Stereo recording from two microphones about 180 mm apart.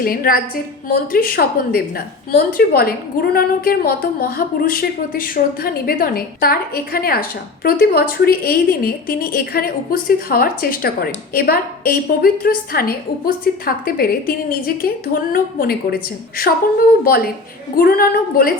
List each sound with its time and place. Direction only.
0.0 s a woman's voice: 55° left (ahead or behind)
17.0 s a woman's voice: 55° left (ahead or behind)